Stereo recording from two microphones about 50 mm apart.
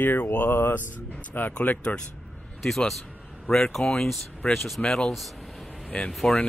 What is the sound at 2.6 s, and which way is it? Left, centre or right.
A man's voice, centre.